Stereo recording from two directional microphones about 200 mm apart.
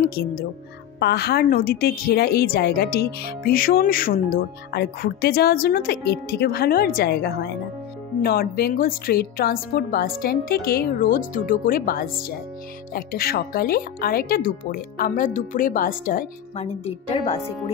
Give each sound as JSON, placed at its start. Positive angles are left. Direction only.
{"t": 0.1, "sound": "a woman's voice", "side_deg": 50}
{"t": 16.5, "sound": "a woman's voice", "side_deg": 30}